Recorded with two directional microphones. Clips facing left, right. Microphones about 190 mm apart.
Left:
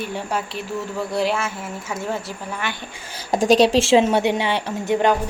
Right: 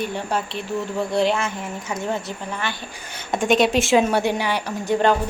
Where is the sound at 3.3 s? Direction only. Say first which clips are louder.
Left 3 dB; 35° left (ahead or behind).